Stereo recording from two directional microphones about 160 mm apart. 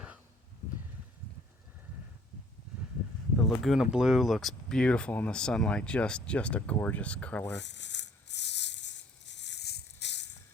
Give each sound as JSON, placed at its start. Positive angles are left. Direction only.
{"t": 3.3, "sound": "speech", "side_deg": 0}
{"t": 7.5, "sound": "rattle", "side_deg": 90}